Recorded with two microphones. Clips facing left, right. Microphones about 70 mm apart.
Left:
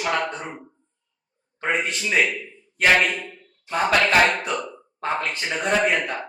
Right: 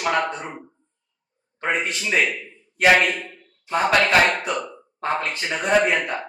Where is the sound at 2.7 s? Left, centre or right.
Centre.